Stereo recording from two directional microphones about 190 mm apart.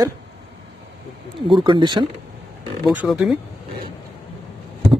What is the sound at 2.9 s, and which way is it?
Speech, 5° right (ahead or behind).